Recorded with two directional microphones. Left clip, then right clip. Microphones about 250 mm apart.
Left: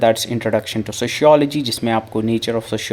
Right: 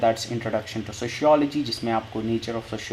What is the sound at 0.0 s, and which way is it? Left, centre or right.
Speech, left.